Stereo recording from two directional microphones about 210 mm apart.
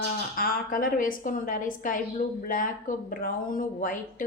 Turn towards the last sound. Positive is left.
turn(degrees=40)  # may be behind; listen again after turning